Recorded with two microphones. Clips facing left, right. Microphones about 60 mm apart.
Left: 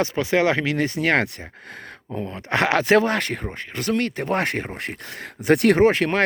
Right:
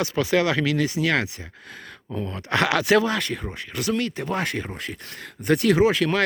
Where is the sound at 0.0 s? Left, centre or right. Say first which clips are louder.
Left 2 dB; left.